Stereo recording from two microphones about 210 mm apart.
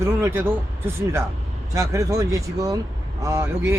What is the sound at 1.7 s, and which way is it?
Speech, 15° right (ahead or behind).